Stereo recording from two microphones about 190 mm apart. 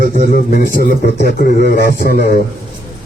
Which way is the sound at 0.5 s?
50° left (ahead or behind).